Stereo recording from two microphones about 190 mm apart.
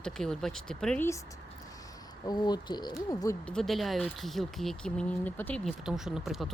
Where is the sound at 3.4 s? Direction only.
Centre (ahead or behind).